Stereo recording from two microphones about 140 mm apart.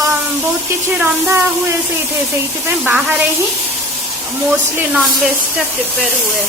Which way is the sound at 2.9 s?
10° right (ahead or behind).